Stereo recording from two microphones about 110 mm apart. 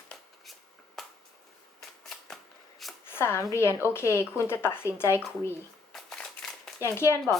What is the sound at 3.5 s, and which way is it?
Speech, 25° left (ahead or behind).